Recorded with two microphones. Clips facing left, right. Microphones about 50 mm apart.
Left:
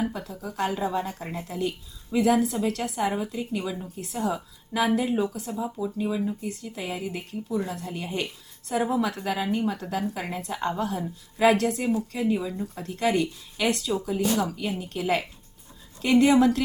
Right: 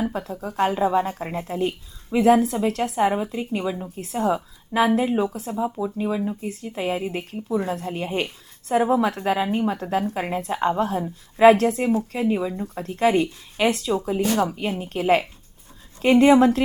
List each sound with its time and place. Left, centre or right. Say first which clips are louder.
0.1 s speech: right 5 dB; right
3.8 s speech: right 6 dB; right
4.9 s speech: right 4 dB; right
10.8 s speech: right 5 dB; right
12.6 s speech: right 7 dB; right
14.2 s speech: right 4 dB; right